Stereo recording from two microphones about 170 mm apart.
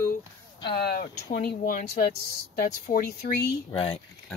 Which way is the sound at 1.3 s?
55° left (ahead or behind).